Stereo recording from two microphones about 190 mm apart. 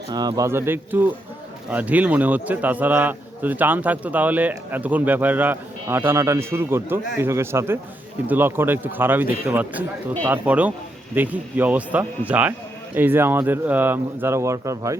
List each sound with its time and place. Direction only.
0.1 s a man's voice: 20° right (ahead or behind)